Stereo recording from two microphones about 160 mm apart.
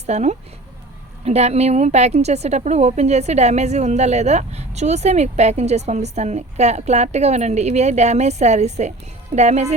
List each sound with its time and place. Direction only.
0.0 s a woman's voice: 45° right (ahead or behind)